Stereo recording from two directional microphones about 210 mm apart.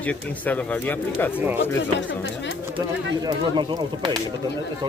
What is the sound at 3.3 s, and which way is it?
Speech, 20° right (ahead or behind).